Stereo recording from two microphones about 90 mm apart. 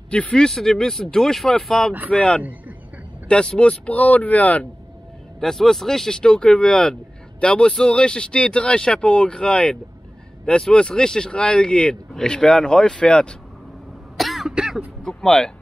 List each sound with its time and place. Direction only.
0.1 s speech: 10° left (ahead or behind)
5.4 s speech: 5° left (ahead or behind)
14.1 s throat clearing: centre (ahead or behind)
15.0 s speech: 5° left (ahead or behind)